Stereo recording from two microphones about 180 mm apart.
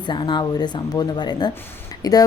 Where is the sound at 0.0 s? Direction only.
25° left (ahead or behind).